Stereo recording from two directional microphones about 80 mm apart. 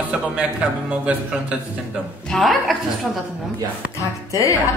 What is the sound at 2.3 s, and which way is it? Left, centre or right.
Speech, centre.